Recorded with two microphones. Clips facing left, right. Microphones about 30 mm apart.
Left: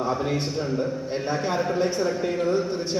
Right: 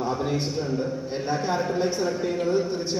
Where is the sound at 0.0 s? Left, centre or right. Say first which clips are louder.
Left 1 dB; centre.